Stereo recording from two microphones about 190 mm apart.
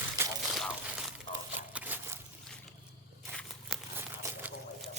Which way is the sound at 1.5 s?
10° right (ahead or behind).